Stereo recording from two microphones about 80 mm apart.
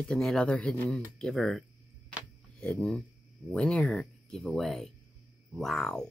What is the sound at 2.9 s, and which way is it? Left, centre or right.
Speech, centre.